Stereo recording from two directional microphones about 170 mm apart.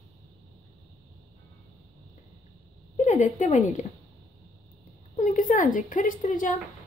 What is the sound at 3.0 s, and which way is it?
Speech, 45° left (ahead or behind).